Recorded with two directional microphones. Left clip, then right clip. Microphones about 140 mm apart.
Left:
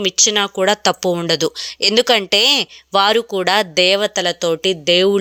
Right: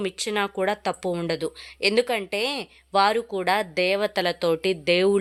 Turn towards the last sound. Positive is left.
turn(degrees=20)  # may be behind; listen again after turning